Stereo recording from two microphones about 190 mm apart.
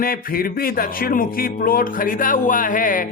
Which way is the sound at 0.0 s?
50° left (ahead or behind).